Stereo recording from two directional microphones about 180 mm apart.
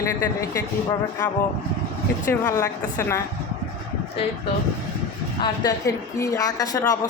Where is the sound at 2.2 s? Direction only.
20° left (ahead or behind).